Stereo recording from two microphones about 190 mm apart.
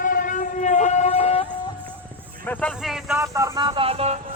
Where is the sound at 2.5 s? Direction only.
5° left (ahead or behind).